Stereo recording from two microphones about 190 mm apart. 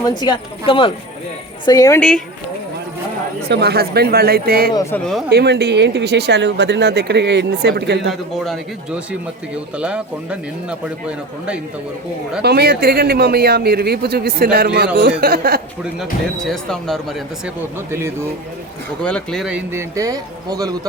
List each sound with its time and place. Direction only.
0.0 s a woman's voice: 20° left (ahead or behind)
2.0 s a woman's voice: 5° left (ahead or behind)
3.5 s speech: 60° right (ahead or behind)
4.7 s a woman's voice: 15° left (ahead or behind)
5.3 s speech: 60° right (ahead or behind)
9.7 s speech: 5° right (ahead or behind)
12.4 s speech: 60° right (ahead or behind)
16.5 s speech: 5° left (ahead or behind)
19.0 s speech: 5° left (ahead or behind)
20.0 s speech: 20° right (ahead or behind)